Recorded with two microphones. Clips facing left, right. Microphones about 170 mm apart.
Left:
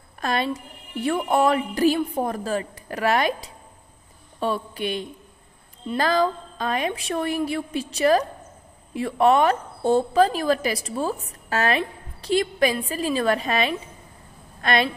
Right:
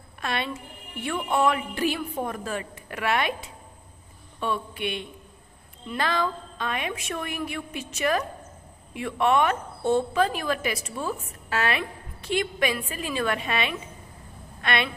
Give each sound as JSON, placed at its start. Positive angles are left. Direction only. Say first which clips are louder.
{"t": 0.2, "sound": "a woman's voice", "louder": "left 5 dB", "side_deg": 40}